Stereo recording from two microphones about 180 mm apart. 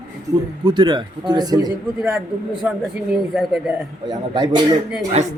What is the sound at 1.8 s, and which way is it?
Speech, 10° right (ahead or behind).